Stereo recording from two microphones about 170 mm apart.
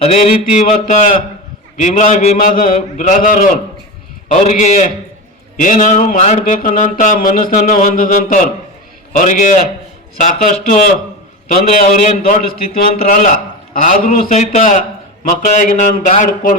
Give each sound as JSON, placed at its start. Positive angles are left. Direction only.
{"t": 0.0, "sound": "speech", "side_deg": 35}